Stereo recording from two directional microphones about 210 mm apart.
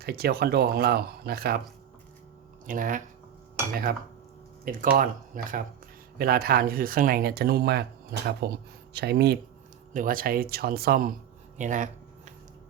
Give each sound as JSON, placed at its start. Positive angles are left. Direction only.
{"t": 0.0, "sound": "speech", "side_deg": -50}
{"t": 2.6, "sound": "speech", "side_deg": -40}
{"t": 11.5, "sound": "a sound", "side_deg": -35}